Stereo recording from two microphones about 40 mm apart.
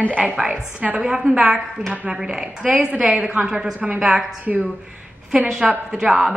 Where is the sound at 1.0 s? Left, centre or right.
Centre.